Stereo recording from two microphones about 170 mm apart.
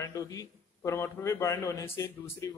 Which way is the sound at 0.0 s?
20° left (ahead or behind).